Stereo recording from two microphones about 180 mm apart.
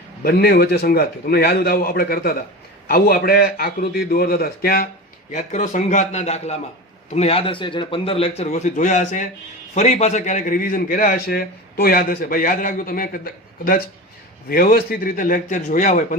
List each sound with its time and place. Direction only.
0.2 s a man's voice: 55° left (ahead or behind)
5.3 s a man's voice: 40° left (ahead or behind)